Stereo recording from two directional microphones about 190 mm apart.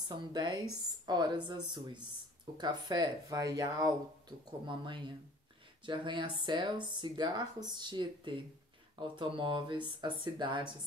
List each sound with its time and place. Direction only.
0.1 s speech: 20° right (ahead or behind)